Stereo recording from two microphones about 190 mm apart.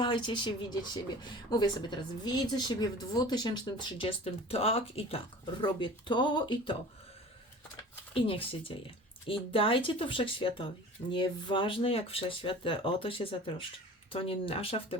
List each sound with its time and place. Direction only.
0.0 s a woman's voice: 25° left (ahead or behind)
8.1 s a woman's voice: 30° left (ahead or behind)